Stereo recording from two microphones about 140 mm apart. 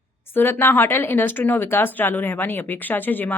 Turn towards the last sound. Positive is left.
turn(degrees=15)  # may be behind; listen again after turning